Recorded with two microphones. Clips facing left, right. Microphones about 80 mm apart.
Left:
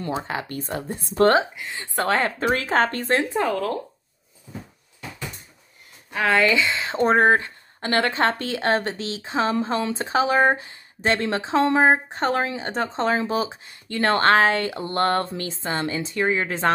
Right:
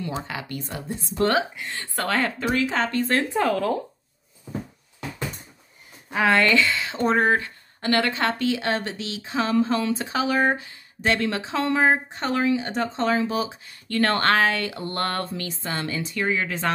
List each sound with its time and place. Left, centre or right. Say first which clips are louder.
0.2 s speech: left 3 dB; left
1.7 s a woman's voice: left 3 dB; centre
2.0 s speech: left 3 dB; left
3.3 s speech: right 1 dB; centre
6.1 s speech: even; centre
6.5 s speech: right 1 dB; left
6.8 s speech: left 3 dB; left